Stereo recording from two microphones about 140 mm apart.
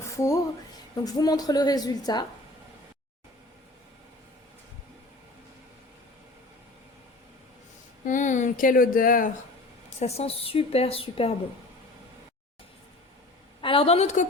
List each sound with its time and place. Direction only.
0.0 s a sound: 20° left (ahead or behind)
1.0 s a woman's voice: 25° left (ahead or behind)
8.0 s speech: 65° left (ahead or behind)
10.0 s a woman's voice: 50° left (ahead or behind)
13.6 s a woman's voice: 40° left (ahead or behind)